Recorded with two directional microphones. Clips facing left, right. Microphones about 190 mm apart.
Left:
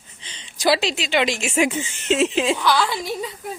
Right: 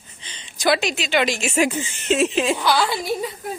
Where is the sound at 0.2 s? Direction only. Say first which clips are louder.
Left 1 dB; 25° left (ahead or behind).